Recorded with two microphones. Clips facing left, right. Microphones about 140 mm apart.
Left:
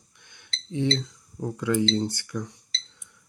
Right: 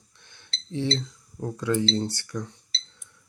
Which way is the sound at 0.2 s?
15° left (ahead or behind).